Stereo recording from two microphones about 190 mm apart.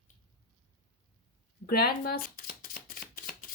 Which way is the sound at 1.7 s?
55° left (ahead or behind).